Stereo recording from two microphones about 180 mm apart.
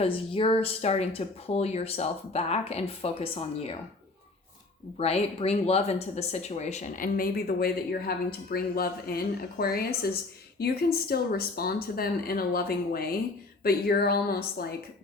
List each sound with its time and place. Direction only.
0.0 s speech: 30° left (ahead or behind)
4.9 s speech: 35° left (ahead or behind); by 14.7 s 60° left (ahead or behind)